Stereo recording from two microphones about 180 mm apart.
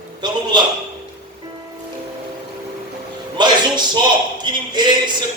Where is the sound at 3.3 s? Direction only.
25° right (ahead or behind).